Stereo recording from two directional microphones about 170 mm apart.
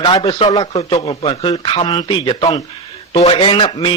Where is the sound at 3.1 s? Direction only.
35° left (ahead or behind).